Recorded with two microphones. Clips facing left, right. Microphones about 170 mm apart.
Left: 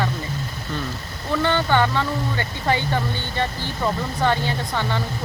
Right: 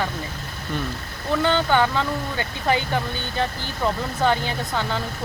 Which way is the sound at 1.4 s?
10° right (ahead or behind).